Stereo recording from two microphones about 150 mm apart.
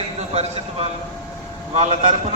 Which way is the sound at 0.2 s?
40° right (ahead or behind).